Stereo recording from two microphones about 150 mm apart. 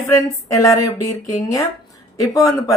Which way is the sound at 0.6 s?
25° left (ahead or behind).